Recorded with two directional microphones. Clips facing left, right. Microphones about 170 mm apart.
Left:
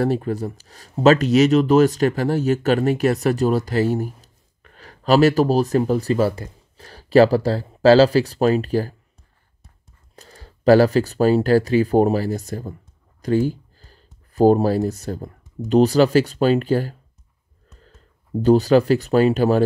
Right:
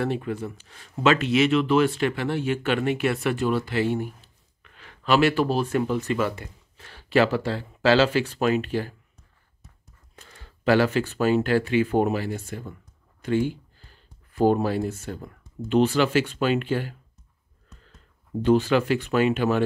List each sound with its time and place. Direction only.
0.0 s speech: 40° left (ahead or behind)
10.1 s speech: 40° left (ahead or behind)